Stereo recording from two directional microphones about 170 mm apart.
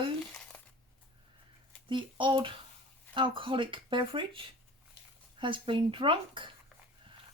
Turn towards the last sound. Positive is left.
turn(degrees=-30)  # may be behind; listen again after turning